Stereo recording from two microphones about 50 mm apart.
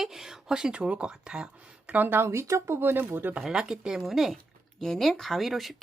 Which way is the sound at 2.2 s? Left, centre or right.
Right.